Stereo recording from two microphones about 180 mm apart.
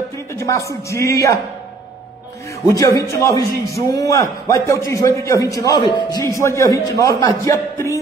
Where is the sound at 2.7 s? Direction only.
15° left (ahead or behind).